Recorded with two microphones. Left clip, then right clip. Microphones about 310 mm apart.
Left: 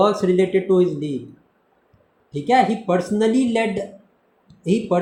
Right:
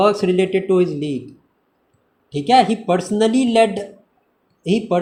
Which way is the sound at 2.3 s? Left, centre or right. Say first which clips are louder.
Right 3 dB; centre.